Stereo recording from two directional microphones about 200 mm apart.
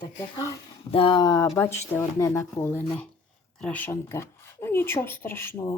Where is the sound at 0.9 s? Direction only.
25° left (ahead or behind).